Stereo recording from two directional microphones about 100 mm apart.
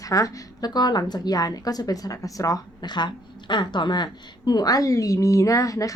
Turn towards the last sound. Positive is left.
turn(degrees=35)  # may be behind; listen again after turning